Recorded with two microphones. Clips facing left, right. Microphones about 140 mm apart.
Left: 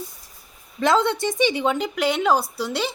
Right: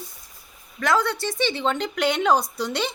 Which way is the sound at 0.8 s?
25° left (ahead or behind).